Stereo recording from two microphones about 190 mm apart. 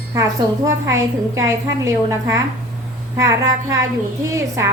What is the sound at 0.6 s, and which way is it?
A woman's voice, 15° right (ahead or behind).